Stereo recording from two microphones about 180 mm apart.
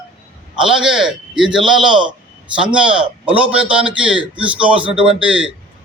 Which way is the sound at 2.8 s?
5° right (ahead or behind).